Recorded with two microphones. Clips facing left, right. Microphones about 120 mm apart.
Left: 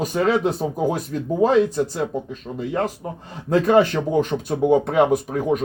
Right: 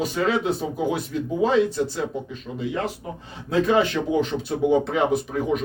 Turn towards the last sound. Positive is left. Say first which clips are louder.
# left 3 dB
turn(degrees=45)  # may be behind; listen again after turning